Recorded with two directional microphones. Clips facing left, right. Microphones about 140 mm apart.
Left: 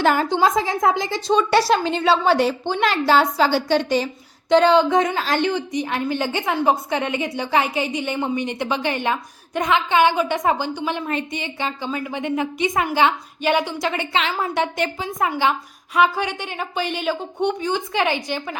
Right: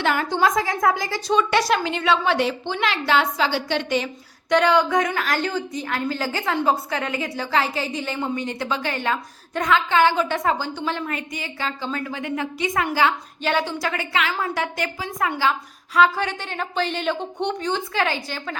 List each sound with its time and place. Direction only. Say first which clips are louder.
0.0 s a woman's voice: left 4 dB; 40° left (ahead or behind)
0.3 s a woman's voice: left 2 dB; 25° left (ahead or behind)
16.0 s a woman's voice: even; 15° left (ahead or behind)